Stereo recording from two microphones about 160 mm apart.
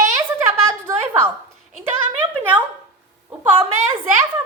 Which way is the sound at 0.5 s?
15° right (ahead or behind).